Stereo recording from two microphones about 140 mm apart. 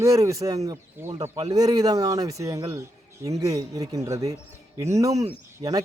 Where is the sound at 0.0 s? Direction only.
20° right (ahead or behind).